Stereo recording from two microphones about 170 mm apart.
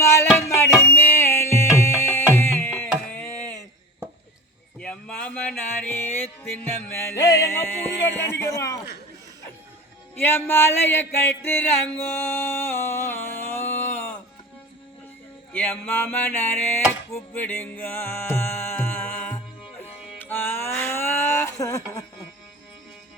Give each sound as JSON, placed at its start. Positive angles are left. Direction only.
{"t": 0.0, "sound": "music", "side_deg": 15}
{"t": 3.2, "sound": "a sound", "side_deg": 10}
{"t": 4.8, "sound": "music", "side_deg": 5}
{"t": 7.2, "sound": "speech", "side_deg": 20}
{"t": 10.2, "sound": "speech", "side_deg": 15}
{"t": 12.1, "sound": "music", "side_deg": 15}
{"t": 15.5, "sound": "speech", "side_deg": 10}
{"t": 17.1, "sound": "music", "side_deg": 10}